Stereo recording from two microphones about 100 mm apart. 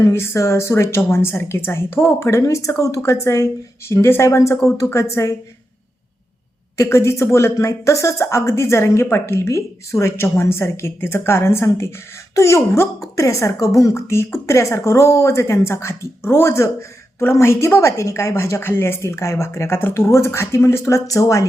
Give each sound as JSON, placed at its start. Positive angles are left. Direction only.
{"t": 0.0, "sound": "speech", "side_deg": 30}
{"t": 6.7, "sound": "speech", "side_deg": 30}